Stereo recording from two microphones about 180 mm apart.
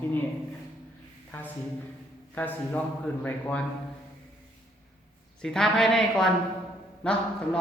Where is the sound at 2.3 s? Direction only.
10° left (ahead or behind).